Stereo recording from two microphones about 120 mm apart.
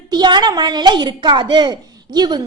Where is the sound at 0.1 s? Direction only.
40° right (ahead or behind).